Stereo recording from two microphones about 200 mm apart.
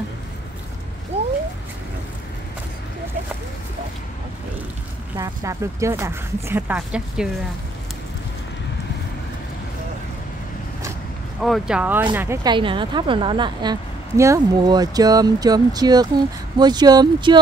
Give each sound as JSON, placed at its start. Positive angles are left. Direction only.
{"t": 1.1, "sound": "cat", "side_deg": -30}
{"t": 5.1, "sound": "speech", "side_deg": -15}
{"t": 11.4, "sound": "speech", "side_deg": 0}
{"t": 12.5, "sound": "a woman's voice", "side_deg": -25}